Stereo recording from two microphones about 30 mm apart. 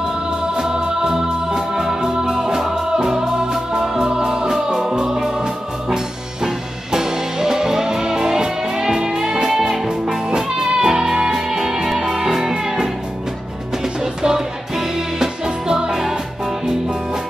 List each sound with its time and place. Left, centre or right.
0.6 s music: right
9.4 s music: centre
14.2 s music: centre
15.9 s music: centre